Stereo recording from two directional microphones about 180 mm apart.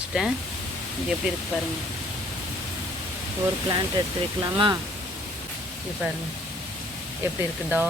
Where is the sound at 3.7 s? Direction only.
20° right (ahead or behind).